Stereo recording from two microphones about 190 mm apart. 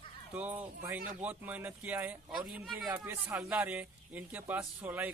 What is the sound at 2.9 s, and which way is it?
Speech, 15° right (ahead or behind).